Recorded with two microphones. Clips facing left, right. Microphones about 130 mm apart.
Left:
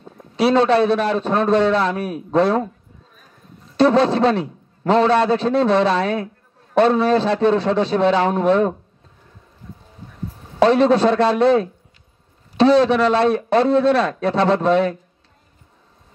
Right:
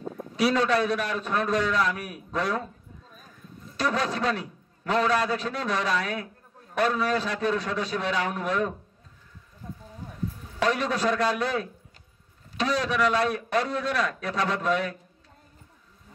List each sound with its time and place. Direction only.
0.4 s a man's voice: 30° left (ahead or behind)
3.7 s a man's voice: 30° left (ahead or behind)
10.6 s a man's voice: 30° left (ahead or behind)